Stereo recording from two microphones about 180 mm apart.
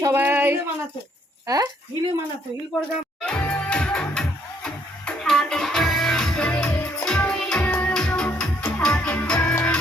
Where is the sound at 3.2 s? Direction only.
5° left (ahead or behind).